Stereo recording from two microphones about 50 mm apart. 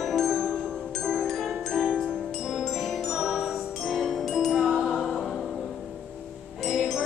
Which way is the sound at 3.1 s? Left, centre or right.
Centre.